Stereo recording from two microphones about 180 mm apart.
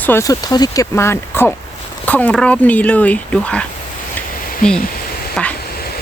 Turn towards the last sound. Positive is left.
turn(degrees=5)  # may be behind; listen again after turning